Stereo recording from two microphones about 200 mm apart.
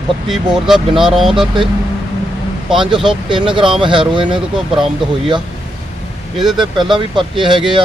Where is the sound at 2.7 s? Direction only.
25° right (ahead or behind).